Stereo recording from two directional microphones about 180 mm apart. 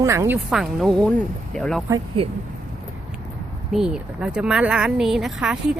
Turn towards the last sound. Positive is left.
turn(degrees=-5)  # may be behind; listen again after turning